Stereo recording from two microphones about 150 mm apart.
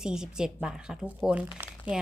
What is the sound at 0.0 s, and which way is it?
A woman's voice, 5° right (ahead or behind).